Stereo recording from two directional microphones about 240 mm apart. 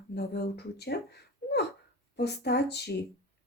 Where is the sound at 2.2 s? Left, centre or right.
Left.